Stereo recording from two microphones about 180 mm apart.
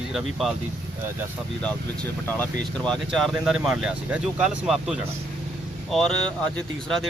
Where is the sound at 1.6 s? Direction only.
10° left (ahead or behind).